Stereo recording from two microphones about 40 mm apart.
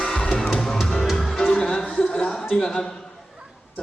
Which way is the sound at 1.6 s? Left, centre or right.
Centre.